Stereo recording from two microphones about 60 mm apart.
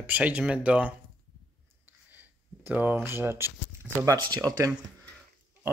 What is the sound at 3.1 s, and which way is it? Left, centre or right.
Speech, right.